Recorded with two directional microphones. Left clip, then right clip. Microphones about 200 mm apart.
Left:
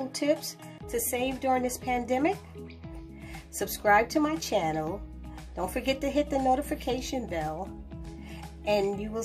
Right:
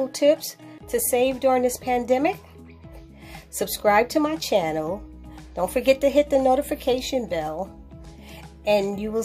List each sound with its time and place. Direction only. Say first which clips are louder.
0.1 s speech: right 7 dB; 30° right (ahead or behind)
3.5 s a woman's voice: right 4 dB; 30° right (ahead or behind)
8.6 s a woman's voice: right 6 dB; 30° right (ahead or behind)